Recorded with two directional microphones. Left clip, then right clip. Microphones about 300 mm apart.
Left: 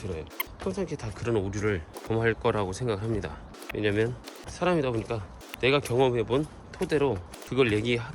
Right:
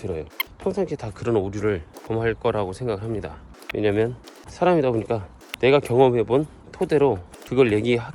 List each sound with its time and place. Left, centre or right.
0.0 s speech: centre